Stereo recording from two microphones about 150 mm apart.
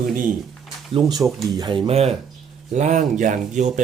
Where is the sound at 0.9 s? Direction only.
25° right (ahead or behind).